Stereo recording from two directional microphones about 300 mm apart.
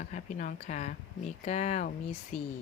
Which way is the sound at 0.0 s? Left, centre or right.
Left.